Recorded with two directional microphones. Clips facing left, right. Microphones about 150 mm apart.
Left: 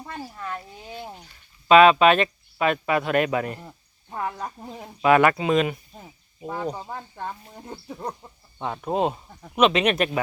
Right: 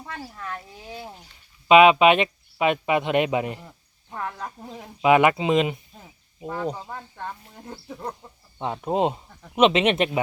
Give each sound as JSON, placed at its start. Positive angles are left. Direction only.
{"t": 0.3, "sound": "speech", "side_deg": 5}
{"t": 1.6, "sound": "speech", "side_deg": -15}
{"t": 4.1, "sound": "speech", "side_deg": 10}
{"t": 5.0, "sound": "speech", "side_deg": -15}
{"t": 6.0, "sound": "a sound", "side_deg": 0}
{"t": 6.6, "sound": "speech", "side_deg": 10}
{"t": 8.6, "sound": "speech", "side_deg": -20}